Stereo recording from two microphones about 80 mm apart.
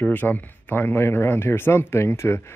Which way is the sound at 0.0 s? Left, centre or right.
Left.